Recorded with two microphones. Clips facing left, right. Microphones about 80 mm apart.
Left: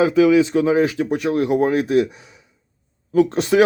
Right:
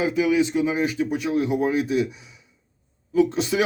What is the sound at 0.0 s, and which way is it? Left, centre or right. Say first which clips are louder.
Speech: left 7 dB; left.